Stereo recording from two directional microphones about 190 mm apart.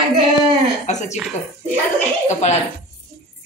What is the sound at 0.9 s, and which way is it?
Speech, 40° left (ahead or behind).